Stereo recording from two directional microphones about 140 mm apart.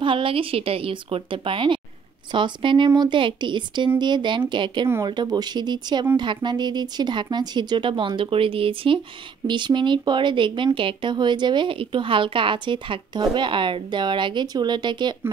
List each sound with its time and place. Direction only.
0.0 s speech: 40° right (ahead or behind)